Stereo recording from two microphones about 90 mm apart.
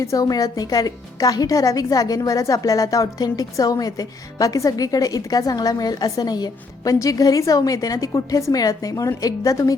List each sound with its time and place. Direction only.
0.0 s a woman's voice: 40° left (ahead or behind)